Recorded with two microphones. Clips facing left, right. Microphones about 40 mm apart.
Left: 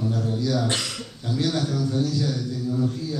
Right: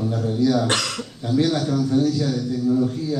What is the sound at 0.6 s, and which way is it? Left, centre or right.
Speech, right.